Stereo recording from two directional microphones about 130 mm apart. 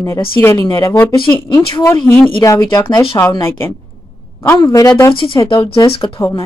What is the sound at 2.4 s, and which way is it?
Speech, 25° left (ahead or behind).